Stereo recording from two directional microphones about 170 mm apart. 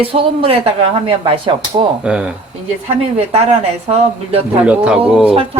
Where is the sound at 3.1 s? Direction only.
35° right (ahead or behind).